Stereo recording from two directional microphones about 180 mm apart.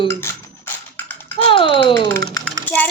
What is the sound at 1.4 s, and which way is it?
Speech, 30° left (ahead or behind).